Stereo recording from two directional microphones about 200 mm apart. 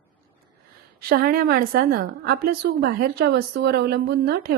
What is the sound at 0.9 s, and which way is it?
A woman's voice, 50° right (ahead or behind).